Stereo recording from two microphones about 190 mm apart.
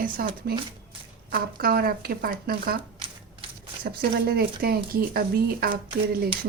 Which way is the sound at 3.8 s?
55° right (ahead or behind).